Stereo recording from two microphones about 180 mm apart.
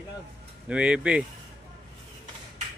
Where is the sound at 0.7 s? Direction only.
5° right (ahead or behind).